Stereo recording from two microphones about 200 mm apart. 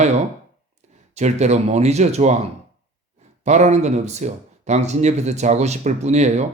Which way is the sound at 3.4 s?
35° right (ahead or behind).